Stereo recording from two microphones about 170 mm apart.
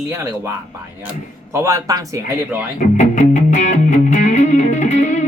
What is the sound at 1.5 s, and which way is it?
Speech, 15° right (ahead or behind).